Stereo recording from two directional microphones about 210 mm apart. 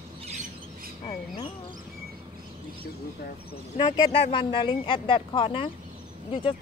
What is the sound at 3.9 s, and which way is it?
Speech, 30° left (ahead or behind).